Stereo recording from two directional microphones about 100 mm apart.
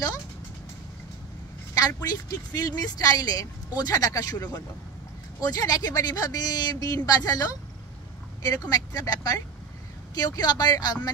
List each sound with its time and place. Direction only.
2.0 s speech: 40° left (ahead or behind)
8.5 s speech: 35° left (ahead or behind)